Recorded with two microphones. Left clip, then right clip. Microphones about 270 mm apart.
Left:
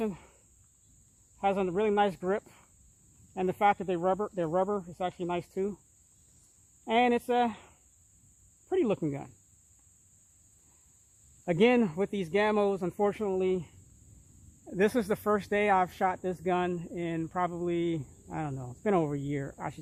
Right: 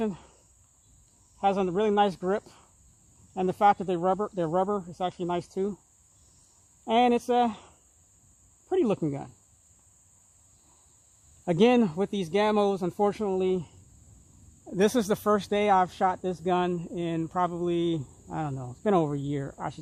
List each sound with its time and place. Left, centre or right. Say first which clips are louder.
0.0 s cricket: right 3 dB; right
1.4 s speech: right 3 dB; right
6.8 s speech: right 3 dB; right
8.7 s speech: right 3 dB; right
11.4 s speech: right 3 dB; right